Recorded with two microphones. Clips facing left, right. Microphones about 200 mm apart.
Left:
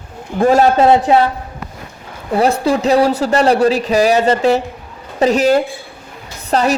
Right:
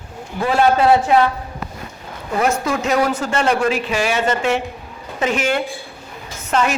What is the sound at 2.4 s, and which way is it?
A man's voice, 35° left (ahead or behind).